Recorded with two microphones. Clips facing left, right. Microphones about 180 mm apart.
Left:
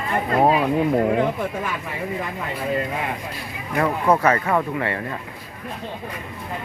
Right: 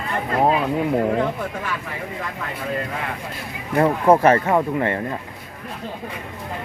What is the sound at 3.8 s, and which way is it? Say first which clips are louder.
Speech: right 4 dB; 30° right (ahead or behind).